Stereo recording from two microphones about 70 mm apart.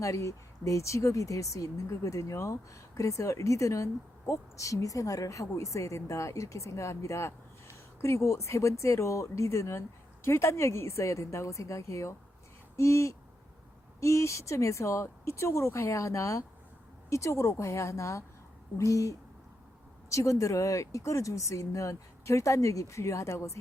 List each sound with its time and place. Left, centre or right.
0.0 s speech: left